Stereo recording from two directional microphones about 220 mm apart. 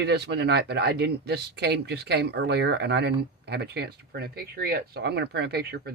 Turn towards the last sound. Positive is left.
turn(degrees=-45)  # may be behind; listen again after turning